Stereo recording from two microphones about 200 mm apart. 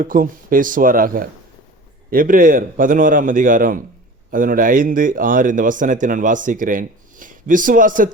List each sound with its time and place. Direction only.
0.0 s a man's voice: 45° right (ahead or behind)